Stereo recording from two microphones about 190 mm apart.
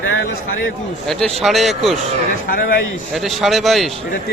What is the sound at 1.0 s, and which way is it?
Speech, centre (ahead or behind).